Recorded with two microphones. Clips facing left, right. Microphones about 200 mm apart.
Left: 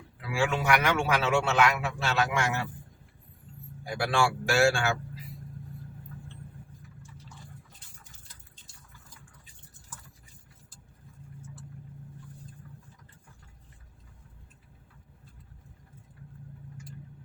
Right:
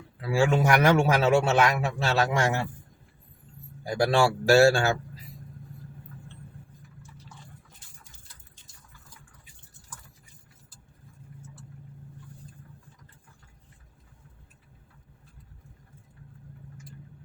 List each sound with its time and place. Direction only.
0.2 s a man's voice: 40° right (ahead or behind)
3.8 s a man's voice: 40° right (ahead or behind)